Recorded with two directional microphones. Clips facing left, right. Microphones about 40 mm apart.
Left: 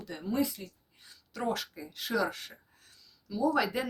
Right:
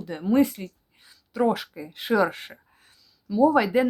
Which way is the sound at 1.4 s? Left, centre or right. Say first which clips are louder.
Right 10 dB; centre.